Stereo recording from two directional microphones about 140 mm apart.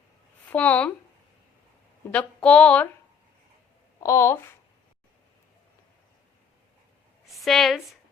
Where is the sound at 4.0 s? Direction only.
20° left (ahead or behind).